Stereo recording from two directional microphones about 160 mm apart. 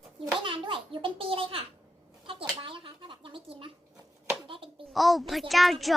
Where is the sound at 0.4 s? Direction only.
30° right (ahead or behind).